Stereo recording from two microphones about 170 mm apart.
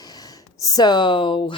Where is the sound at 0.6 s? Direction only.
20° left (ahead or behind).